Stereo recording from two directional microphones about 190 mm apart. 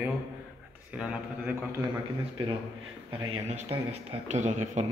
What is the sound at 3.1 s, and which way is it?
Speech, 30° right (ahead or behind).